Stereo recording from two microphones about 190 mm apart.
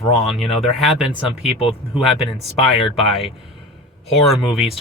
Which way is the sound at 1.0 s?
5° right (ahead or behind).